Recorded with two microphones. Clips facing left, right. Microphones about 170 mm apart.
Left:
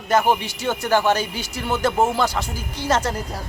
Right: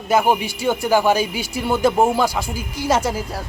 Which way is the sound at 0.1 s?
10° right (ahead or behind).